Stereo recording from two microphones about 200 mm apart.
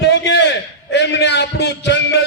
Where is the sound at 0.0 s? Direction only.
60° left (ahead or behind).